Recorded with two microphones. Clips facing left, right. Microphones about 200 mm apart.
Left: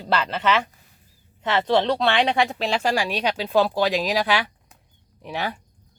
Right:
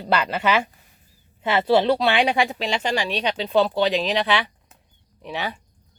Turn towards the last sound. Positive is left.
turn(degrees=10)  # may be behind; listen again after turning